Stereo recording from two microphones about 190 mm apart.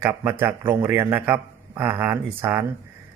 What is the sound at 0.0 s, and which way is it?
A man's voice, 10° right (ahead or behind).